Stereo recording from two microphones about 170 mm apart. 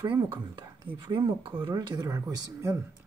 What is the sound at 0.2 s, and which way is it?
Speech, 25° right (ahead or behind).